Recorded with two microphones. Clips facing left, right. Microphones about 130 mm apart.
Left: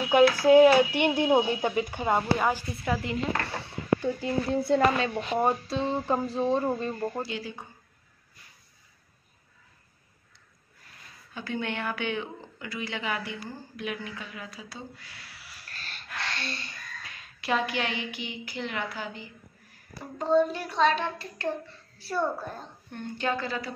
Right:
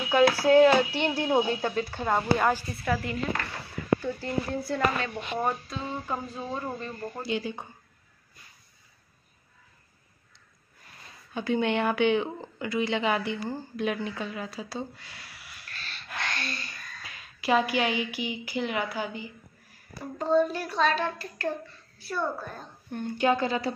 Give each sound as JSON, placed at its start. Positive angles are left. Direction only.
{"t": 0.1, "sound": "speech", "side_deg": 15}
{"t": 2.8, "sound": "speech", "side_deg": 20}
{"t": 7.2, "sound": "a woman's voice", "side_deg": -20}
{"t": 11.3, "sound": "a woman's voice", "side_deg": -20}
{"t": 15.3, "sound": "owl", "side_deg": 35}
{"t": 16.2, "sound": "a sound", "side_deg": 30}
{"t": 17.0, "sound": "a woman's voice", "side_deg": -5}
{"t": 20.2, "sound": "a woman's voice", "side_deg": 20}
{"t": 22.8, "sound": "speech", "side_deg": -10}